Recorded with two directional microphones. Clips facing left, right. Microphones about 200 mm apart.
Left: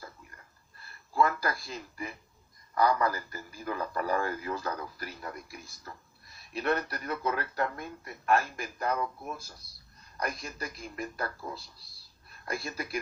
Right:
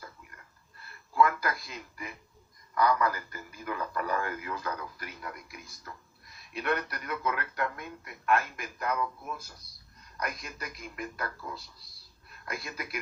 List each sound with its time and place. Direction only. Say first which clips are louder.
1.1 s a sound: right 1 dB; 35° left (ahead or behind)
2.7 s speech: even; 35° left (ahead or behind)
10.2 s speech: left 2 dB; 30° left (ahead or behind)
12.5 s speech: left 3 dB; 30° left (ahead or behind)